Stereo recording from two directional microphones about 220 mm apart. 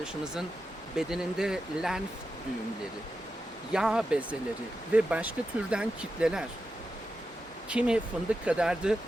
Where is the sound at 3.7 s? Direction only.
5° right (ahead or behind).